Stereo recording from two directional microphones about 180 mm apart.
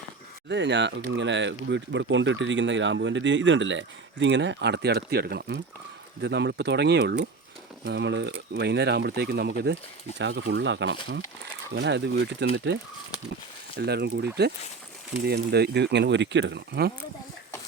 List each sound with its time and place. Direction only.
0.4 s speech: 75° right (ahead or behind)
11.7 s speech: 75° right (ahead or behind)
13.7 s speech: 65° right (ahead or behind)